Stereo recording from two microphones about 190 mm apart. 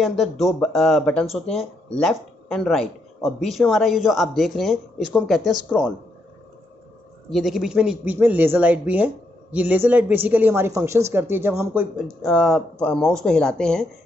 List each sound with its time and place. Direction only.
0.0 s speech: centre (ahead or behind)
7.2 s speech: centre (ahead or behind)
12.2 s speech: 5° left (ahead or behind)